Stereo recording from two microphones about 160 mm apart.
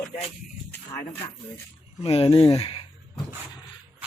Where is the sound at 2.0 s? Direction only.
35° left (ahead or behind).